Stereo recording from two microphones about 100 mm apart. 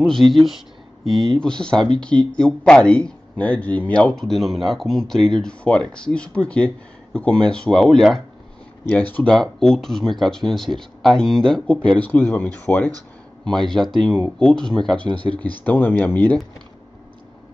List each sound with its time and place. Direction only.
0.0 s speech: 5° left (ahead or behind)
8.8 s speech: 15° left (ahead or behind)
13.5 s speech: 5° left (ahead or behind)
15.6 s speech: 20° left (ahead or behind)